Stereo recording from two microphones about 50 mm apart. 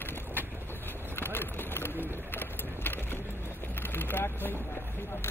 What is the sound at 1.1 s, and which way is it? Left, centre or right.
Bird, left.